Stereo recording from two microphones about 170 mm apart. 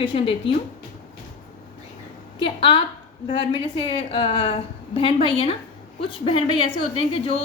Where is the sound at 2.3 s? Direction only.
30° left (ahead or behind).